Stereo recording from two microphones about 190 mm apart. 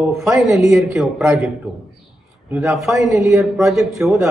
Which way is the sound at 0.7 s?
Centre (ahead or behind).